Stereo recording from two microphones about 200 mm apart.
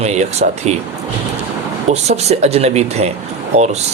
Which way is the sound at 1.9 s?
35° right (ahead or behind).